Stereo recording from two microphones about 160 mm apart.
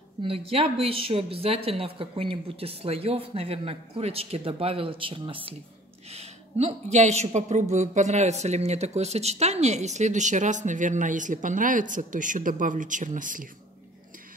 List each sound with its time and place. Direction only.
0.2 s speech: 35° right (ahead or behind); by 13.5 s 55° right (ahead or behind)